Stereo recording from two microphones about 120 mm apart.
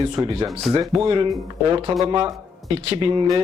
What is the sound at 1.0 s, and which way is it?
A man's voice, 45° right (ahead or behind).